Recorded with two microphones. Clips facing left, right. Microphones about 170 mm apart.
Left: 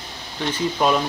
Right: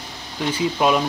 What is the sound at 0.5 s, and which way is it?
Speech, 5° right (ahead or behind).